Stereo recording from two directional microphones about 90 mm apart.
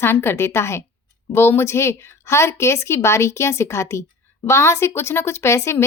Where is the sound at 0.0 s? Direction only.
25° left (ahead or behind).